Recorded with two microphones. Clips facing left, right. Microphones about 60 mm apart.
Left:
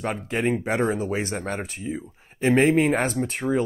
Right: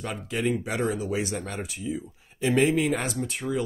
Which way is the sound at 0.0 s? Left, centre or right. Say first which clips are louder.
Left 4 dB; left.